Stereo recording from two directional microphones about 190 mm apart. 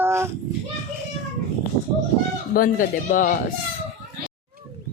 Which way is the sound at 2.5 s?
45° left (ahead or behind).